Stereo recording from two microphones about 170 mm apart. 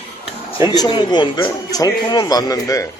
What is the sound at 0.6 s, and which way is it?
A man's voice, 25° left (ahead or behind).